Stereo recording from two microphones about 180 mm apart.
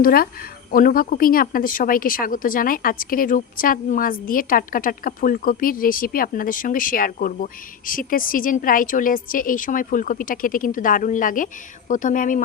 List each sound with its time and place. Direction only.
0.0 s a woman's voice: 55° left (ahead or behind)